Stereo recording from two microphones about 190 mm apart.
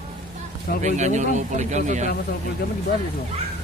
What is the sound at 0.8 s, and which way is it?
Speech, 40° right (ahead or behind).